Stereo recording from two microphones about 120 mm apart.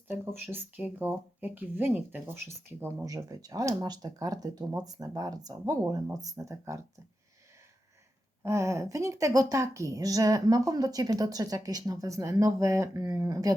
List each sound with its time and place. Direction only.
0.3 s speech: 20° right (ahead or behind)
8.4 s speech: 25° right (ahead or behind)